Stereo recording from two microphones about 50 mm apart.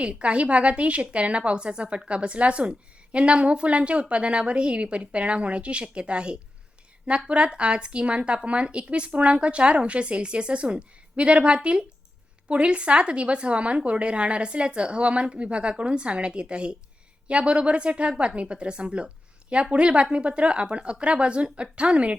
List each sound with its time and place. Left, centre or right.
0.0 s a woman's voice: right